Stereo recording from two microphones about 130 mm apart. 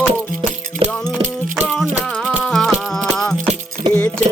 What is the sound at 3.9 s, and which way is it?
Music, 15° left (ahead or behind).